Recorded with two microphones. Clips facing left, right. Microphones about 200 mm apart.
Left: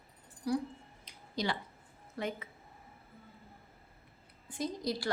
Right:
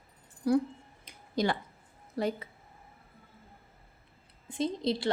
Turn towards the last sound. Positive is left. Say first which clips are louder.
# right 5 dB
turn(degrees=-25)  # may be behind; listen again after turning